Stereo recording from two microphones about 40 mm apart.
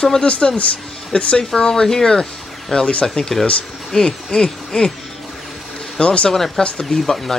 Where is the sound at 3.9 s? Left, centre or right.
Centre.